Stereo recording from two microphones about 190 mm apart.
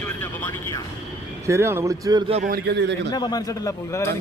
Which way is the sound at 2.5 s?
60° right (ahead or behind).